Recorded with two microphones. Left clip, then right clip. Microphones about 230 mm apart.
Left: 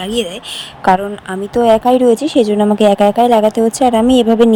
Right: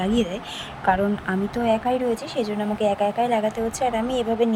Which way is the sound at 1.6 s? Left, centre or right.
Left.